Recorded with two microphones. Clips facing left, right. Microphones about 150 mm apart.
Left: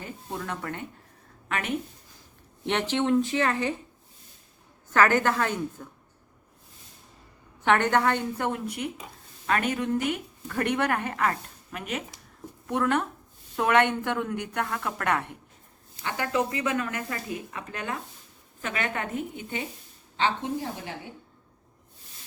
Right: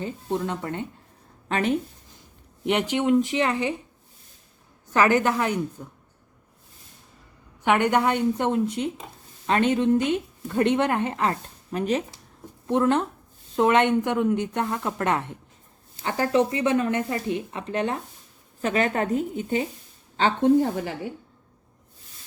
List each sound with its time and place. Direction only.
0.0 s a woman's voice: 25° right (ahead or behind)
2.6 s a woman's voice: 15° right (ahead or behind)
4.9 s a woman's voice: 15° right (ahead or behind)
7.6 s a woman's voice: 15° right (ahead or behind)
16.0 s a woman's voice: 35° right (ahead or behind)
20.1 s a woman's voice: 45° right (ahead or behind)